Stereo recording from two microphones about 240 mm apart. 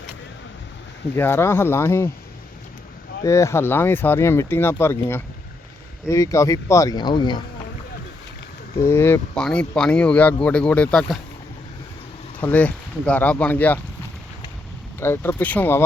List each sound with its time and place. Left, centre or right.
1.1 s speech: centre
3.2 s speech: centre
8.8 s speech: centre
12.4 s speech: centre
14.9 s speech: centre